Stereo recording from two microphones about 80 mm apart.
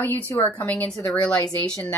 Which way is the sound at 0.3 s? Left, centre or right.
Left.